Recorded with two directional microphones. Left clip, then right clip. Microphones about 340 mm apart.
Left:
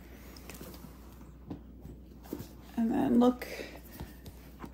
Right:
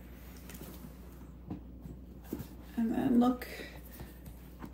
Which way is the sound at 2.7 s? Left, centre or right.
Centre.